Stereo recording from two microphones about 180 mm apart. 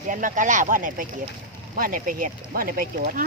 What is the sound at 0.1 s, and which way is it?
Speech, 45° right (ahead or behind).